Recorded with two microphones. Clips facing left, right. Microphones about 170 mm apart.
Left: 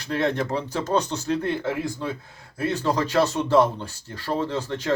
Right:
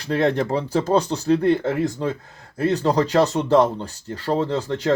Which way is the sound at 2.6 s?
35° right (ahead or behind).